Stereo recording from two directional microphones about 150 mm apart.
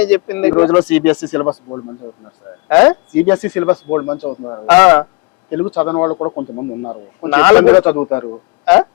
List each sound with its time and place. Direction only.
0.0 s speech: 15° left (ahead or behind)
4.7 s speech: 10° left (ahead or behind)
5.6 s speech: 25° left (ahead or behind)
7.3 s speech: 10° left (ahead or behind)